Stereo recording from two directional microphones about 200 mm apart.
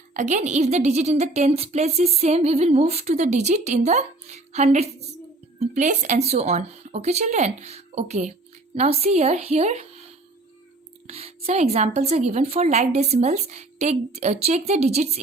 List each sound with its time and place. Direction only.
0.1 s a woman's voice: 35° right (ahead or behind)
11.0 s a woman's voice: 30° right (ahead or behind)